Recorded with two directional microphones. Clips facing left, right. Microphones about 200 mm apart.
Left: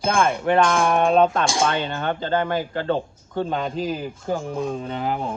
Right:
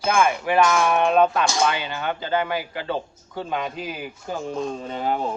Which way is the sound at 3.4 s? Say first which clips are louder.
Left 3 dB; 5° right (ahead or behind).